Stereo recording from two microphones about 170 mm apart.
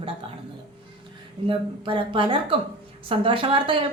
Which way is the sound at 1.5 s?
30° right (ahead or behind).